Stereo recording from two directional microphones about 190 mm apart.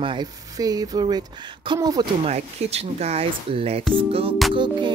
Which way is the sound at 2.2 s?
35° right (ahead or behind).